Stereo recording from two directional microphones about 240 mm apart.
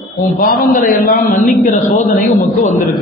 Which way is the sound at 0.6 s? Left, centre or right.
Left.